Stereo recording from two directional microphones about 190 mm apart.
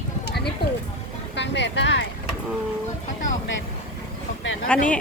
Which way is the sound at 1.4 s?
70° left (ahead or behind).